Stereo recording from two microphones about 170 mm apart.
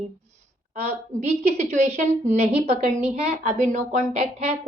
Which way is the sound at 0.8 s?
40° right (ahead or behind).